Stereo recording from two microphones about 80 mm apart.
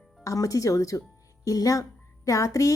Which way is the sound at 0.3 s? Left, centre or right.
Left.